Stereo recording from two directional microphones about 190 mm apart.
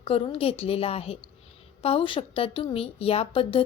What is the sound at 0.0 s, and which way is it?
A woman's voice, 30° left (ahead or behind).